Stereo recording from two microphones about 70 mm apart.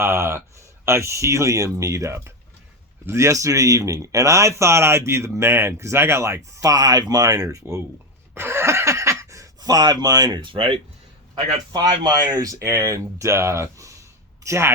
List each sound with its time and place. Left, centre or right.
0.0 s speech: right
8.4 s a sound: right
9.6 s speech: right
11.7 s speech: right